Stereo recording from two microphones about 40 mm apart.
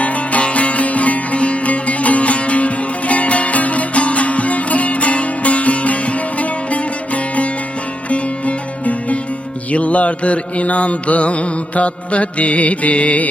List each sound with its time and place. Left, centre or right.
0.0 s music: left
8.1 s music: left
9.7 s mantra: left